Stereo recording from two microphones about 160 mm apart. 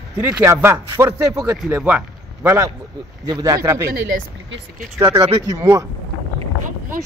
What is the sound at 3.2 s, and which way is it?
Speech, 25° right (ahead or behind).